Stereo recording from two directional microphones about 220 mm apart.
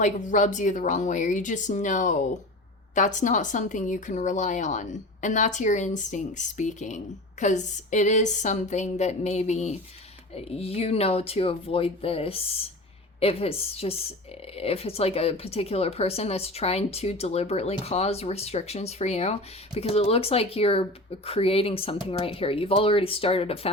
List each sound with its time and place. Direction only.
0.0 s speech: 35° left (ahead or behind)